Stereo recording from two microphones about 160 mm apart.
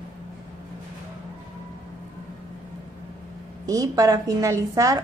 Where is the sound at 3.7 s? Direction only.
20° right (ahead or behind).